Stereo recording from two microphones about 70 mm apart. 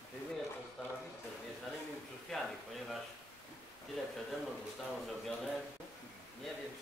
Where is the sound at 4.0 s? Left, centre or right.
Centre.